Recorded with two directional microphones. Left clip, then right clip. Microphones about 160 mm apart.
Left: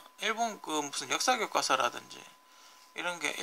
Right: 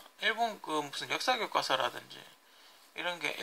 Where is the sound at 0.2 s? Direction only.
20° left (ahead or behind).